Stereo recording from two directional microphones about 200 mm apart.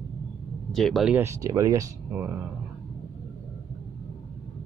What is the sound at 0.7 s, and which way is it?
Speech, centre (ahead or behind).